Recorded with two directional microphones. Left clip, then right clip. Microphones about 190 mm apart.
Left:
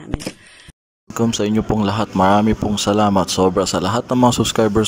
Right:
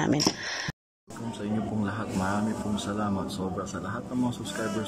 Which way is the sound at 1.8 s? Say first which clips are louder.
Left 18 dB; 25° left (ahead or behind).